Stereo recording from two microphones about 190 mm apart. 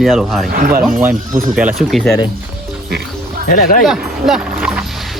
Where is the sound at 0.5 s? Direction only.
50° right (ahead or behind).